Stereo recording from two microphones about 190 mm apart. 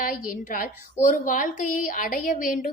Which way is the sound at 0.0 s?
45° left (ahead or behind).